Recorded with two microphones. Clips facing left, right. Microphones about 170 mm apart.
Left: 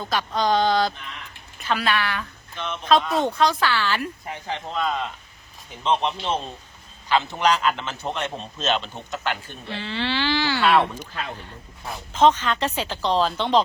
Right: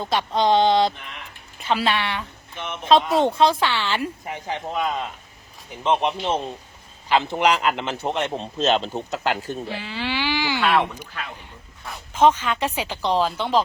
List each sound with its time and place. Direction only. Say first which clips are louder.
0.0 s speech: right 3 dB; 25° right (ahead or behind)
4.3 s speech: right 2 dB; 10° right (ahead or behind)
8.6 s speech: right 4 dB; 30° right (ahead or behind)
9.7 s a sound: left 5 dB; 10° right (ahead or behind)
12.1 s speech: even; 10° right (ahead or behind)